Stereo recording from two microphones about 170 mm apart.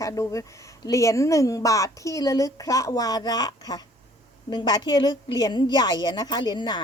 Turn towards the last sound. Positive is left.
turn(degrees=25)  # may be behind; listen again after turning